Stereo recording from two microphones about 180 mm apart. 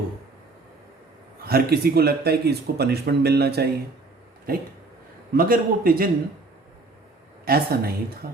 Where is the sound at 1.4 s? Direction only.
60° right (ahead or behind).